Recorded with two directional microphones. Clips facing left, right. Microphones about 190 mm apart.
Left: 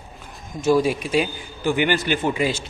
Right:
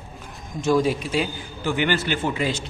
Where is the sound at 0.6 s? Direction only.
10° left (ahead or behind).